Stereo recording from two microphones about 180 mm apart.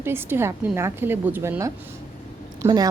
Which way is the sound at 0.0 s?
15° right (ahead or behind).